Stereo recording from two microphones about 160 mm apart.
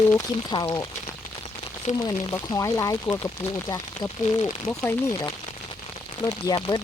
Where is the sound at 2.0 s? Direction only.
20° left (ahead or behind).